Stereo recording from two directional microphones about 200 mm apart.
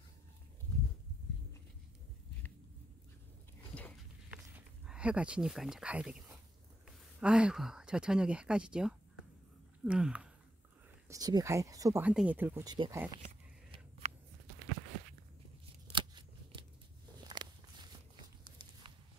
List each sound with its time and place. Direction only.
4.3 s a sound: 5° right (ahead or behind)
7.2 s speech: 5° right (ahead or behind)
11.1 s speech: 20° right (ahead or behind)
12.6 s speech: 20° right (ahead or behind)
13.7 s a sound: 30° right (ahead or behind)
15.9 s scissors: 25° right (ahead or behind)
17.3 s walk: 20° right (ahead or behind)